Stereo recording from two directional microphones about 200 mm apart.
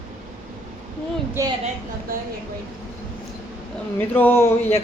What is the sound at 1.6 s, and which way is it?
Speech, 45° right (ahead or behind).